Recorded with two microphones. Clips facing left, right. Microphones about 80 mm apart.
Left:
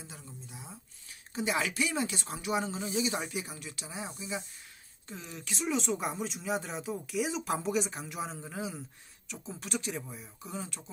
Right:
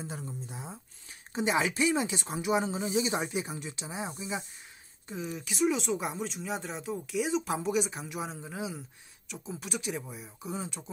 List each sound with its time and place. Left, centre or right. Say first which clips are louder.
0.0 s speech: right 9 dB; right
1.3 s speech: right 3 dB; right